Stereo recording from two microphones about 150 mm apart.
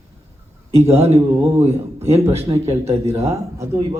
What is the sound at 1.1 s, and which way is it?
A man's voice, 15° right (ahead or behind).